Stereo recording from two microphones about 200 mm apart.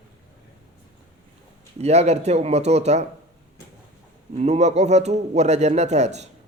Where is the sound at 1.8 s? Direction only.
35° right (ahead or behind).